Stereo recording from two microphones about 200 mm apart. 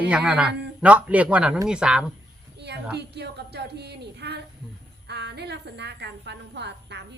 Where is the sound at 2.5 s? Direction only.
55° right (ahead or behind).